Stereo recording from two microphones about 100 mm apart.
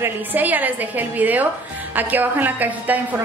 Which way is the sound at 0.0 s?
20° right (ahead or behind).